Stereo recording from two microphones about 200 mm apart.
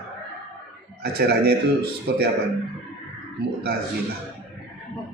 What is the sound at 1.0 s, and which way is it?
A man's voice, 55° right (ahead or behind).